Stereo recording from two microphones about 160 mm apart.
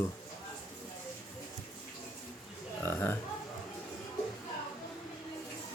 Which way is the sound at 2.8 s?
15° left (ahead or behind).